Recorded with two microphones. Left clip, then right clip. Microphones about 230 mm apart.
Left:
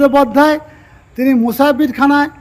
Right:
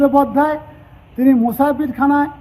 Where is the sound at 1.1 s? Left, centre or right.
Left.